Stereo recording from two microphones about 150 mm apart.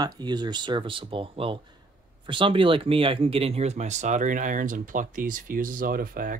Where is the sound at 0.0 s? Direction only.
30° right (ahead or behind).